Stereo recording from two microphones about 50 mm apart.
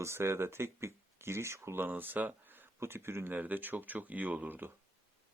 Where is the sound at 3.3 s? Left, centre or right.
Right.